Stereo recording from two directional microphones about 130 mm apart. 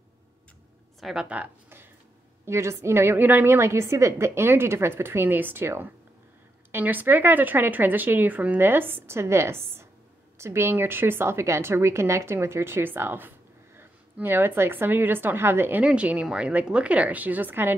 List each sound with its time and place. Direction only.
1.0 s a woman's voice: 10° right (ahead or behind)